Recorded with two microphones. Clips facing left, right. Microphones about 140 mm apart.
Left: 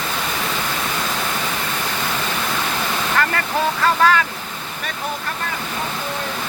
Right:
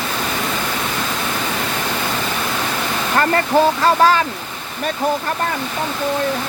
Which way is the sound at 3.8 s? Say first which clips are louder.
Right 3 dB; 30° right (ahead or behind).